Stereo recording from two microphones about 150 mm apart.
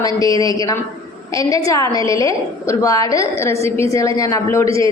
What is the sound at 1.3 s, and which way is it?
A woman's voice, 25° left (ahead or behind).